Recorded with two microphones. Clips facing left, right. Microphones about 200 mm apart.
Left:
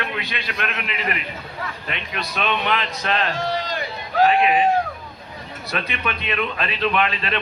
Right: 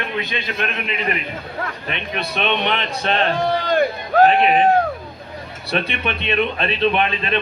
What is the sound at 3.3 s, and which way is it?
Speech, 60° right (ahead or behind).